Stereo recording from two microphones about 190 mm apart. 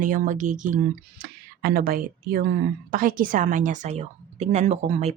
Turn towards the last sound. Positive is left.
turn(degrees=-35)  # may be behind; listen again after turning